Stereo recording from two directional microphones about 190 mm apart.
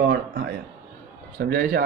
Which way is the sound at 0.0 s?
55° right (ahead or behind).